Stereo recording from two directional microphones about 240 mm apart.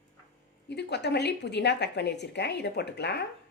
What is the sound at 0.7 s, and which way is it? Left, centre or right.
A woman's voice, left.